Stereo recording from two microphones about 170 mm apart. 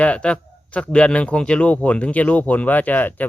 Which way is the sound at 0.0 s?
5° left (ahead or behind).